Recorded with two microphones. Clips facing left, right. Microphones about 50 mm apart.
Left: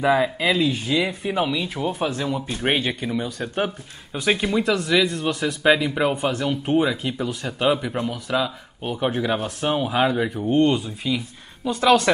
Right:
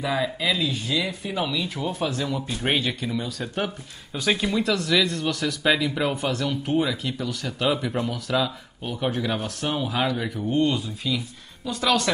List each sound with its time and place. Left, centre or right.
0.2 s speech: left
7.6 s speech: centre; by 10.8 s left
11.1 s speech: centre